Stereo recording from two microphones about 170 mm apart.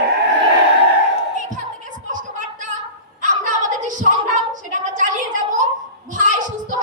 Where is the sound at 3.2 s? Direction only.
50° right (ahead or behind).